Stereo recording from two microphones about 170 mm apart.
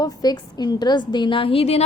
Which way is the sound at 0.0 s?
20° left (ahead or behind).